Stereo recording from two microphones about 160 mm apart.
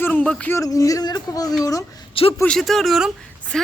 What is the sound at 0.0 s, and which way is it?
Speech, 10° left (ahead or behind).